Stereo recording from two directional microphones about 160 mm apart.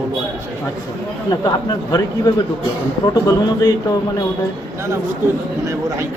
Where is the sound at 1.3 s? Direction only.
25° left (ahead or behind).